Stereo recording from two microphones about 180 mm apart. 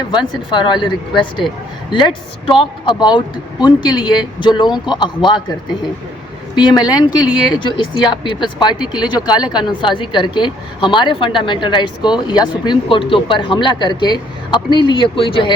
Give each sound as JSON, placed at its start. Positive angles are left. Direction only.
{"t": 0.1, "sound": "speech", "side_deg": 25}
{"t": 2.5, "sound": "speech", "side_deg": 25}
{"t": 6.6, "sound": "speech", "side_deg": 20}